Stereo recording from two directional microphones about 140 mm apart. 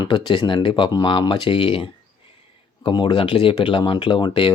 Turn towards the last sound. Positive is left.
turn(degrees=35)  # may be behind; listen again after turning